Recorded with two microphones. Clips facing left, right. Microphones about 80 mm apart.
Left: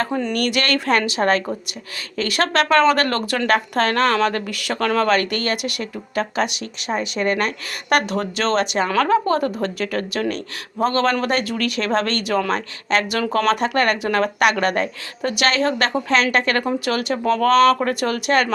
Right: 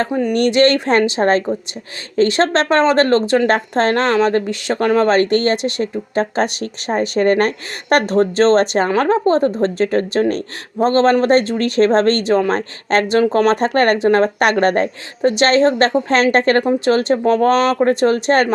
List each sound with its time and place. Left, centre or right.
0.3 s a woman's voice: right
8.9 s a woman's voice: right